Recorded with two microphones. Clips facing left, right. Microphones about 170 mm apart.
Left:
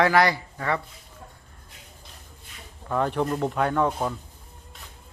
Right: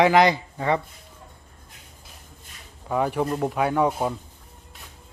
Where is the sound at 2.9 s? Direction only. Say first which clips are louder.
Right 1 dB; 10° right (ahead or behind).